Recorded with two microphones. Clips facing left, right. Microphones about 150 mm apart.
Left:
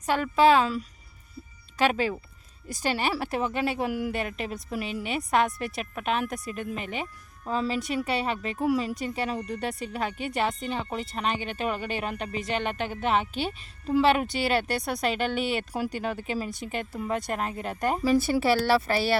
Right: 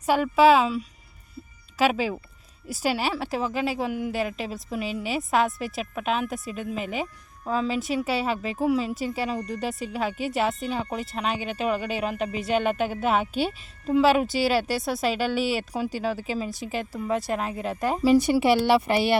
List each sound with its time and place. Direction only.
0.0 s a woman's voice: 10° right (ahead or behind)
18.0 s speech: 15° right (ahead or behind)